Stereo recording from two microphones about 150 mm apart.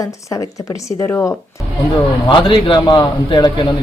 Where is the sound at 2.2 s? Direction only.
30° left (ahead or behind).